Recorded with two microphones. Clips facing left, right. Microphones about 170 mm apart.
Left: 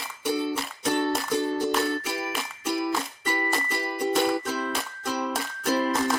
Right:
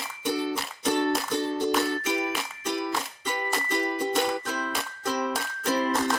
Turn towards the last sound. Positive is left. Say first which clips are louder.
# left 1 dB
turn(degrees=0)  # may be behind; listen again after turning